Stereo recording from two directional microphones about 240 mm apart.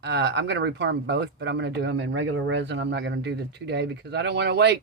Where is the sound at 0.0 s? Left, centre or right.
Right.